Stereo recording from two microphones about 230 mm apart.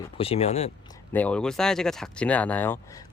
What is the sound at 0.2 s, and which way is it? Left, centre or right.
Speech, left.